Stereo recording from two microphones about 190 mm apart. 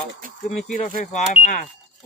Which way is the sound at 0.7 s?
40° left (ahead or behind).